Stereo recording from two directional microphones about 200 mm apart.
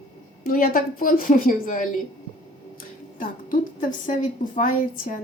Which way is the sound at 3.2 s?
40° left (ahead or behind).